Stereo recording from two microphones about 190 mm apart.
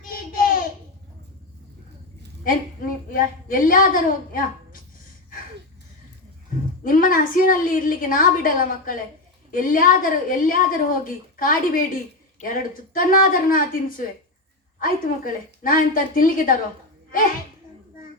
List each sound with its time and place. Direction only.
0.1 s a sound: 50° left (ahead or behind)
2.4 s a woman's voice: 45° left (ahead or behind)
6.8 s a woman's voice: 45° left (ahead or behind)